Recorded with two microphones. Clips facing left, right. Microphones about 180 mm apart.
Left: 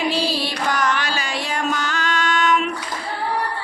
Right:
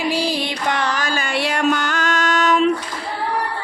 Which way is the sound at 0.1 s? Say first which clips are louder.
Right 1 dB; 15° right (ahead or behind).